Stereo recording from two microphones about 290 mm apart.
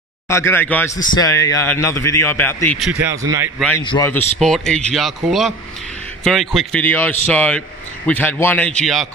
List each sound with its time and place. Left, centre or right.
0.3 s a man's voice: centre
3.5 s speech: centre
3.8 s a man's voice: centre
4.4 s speech: centre